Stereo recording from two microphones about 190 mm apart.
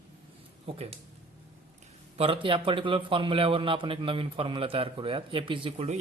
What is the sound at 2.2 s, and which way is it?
A man's voice, 30° right (ahead or behind).